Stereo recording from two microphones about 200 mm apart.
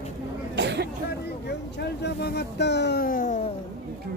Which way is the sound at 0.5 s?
60° right (ahead or behind).